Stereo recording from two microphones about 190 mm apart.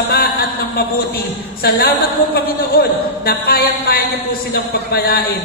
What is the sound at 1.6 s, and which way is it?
A man's voice, 55° left (ahead or behind).